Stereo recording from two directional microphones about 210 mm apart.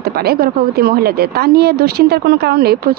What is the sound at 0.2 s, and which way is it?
A woman's voice, 45° right (ahead or behind).